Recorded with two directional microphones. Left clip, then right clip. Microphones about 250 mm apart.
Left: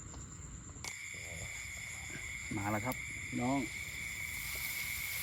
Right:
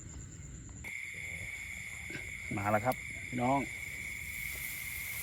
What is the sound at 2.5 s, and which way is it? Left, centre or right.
Speech, right.